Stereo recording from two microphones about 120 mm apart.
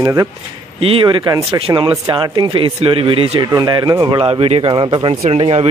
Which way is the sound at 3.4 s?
35° right (ahead or behind).